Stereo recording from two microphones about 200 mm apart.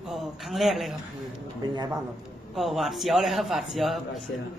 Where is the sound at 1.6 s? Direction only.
20° right (ahead or behind).